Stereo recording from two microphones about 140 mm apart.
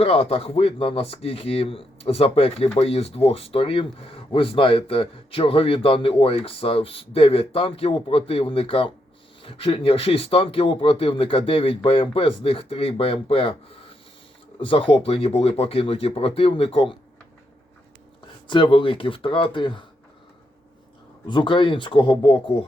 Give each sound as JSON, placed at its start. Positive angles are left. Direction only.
{"t": 0.0, "sound": "speech", "side_deg": 45}
{"t": 18.4, "sound": "speech", "side_deg": 35}
{"t": 21.2, "sound": "speech", "side_deg": 35}